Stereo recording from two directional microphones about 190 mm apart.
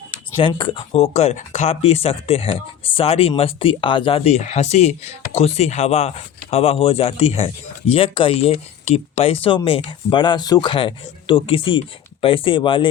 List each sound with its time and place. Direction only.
0.4 s speech: 25° left (ahead or behind)